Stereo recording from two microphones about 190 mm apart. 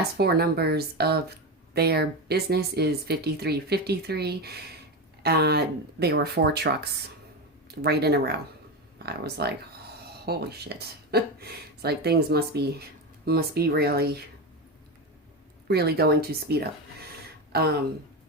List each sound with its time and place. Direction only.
0.2 s speech: 55° right (ahead or behind)
7.8 s speech: 55° right (ahead or behind)
15.6 s speech: 55° right (ahead or behind)